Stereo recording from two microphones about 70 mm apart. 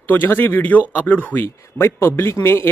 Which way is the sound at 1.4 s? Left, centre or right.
Left.